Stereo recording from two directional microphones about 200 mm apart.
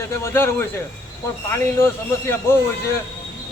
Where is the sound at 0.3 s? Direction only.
15° left (ahead or behind).